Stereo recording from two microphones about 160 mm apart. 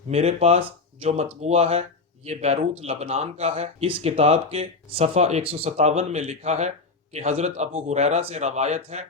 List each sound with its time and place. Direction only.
0.1 s speech: 40° right (ahead or behind)